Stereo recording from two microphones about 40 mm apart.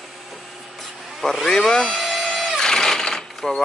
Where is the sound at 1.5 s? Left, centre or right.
Centre.